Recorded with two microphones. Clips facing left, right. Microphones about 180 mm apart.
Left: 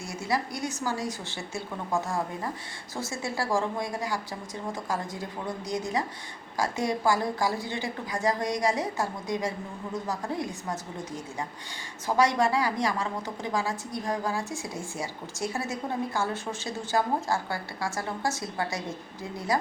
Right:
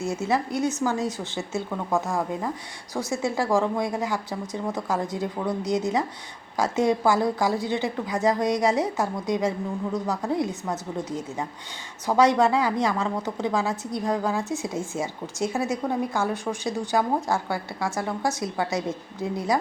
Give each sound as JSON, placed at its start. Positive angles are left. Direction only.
{"t": 0.0, "sound": "a woman's voice", "side_deg": -20}
{"t": 2.9, "sound": "a woman's voice", "side_deg": -20}